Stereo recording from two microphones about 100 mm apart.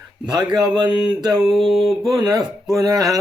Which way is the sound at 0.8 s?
45° right (ahead or behind).